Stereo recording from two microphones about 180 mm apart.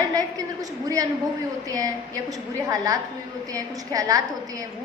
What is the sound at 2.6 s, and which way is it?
A woman's voice, 20° right (ahead or behind).